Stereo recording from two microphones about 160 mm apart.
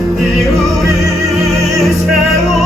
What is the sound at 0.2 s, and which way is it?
Music, centre (ahead or behind).